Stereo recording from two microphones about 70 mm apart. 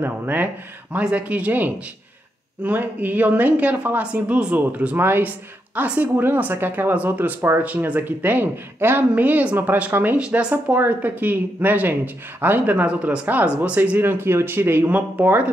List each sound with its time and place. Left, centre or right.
0.0 s speech: right